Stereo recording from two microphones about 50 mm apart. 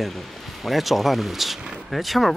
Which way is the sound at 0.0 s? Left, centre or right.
Centre.